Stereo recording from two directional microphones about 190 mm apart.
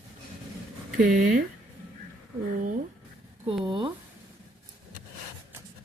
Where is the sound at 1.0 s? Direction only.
45° right (ahead or behind).